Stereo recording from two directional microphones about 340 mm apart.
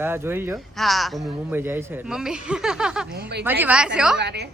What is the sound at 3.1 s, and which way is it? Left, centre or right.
Speech, right.